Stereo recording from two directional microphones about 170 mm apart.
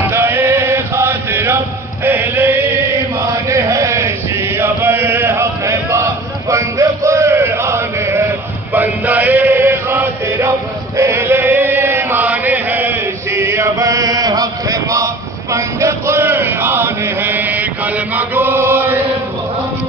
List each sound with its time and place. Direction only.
0.1 s chant: 15° right (ahead or behind)